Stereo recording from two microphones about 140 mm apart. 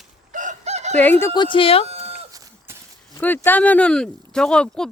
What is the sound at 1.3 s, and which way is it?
Speech, 35° left (ahead or behind).